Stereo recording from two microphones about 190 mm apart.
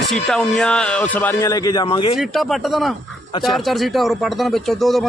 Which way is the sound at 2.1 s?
Centre (ahead or behind).